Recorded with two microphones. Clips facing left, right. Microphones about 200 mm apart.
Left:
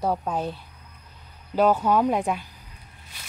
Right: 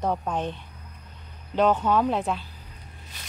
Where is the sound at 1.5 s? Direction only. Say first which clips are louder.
Left 1 dB; 10° left (ahead or behind).